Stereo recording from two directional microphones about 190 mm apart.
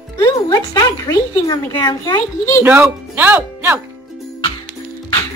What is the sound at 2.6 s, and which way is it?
Speech, 10° right (ahead or behind).